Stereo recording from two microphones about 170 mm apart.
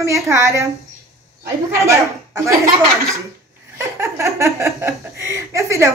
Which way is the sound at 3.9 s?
15° right (ahead or behind).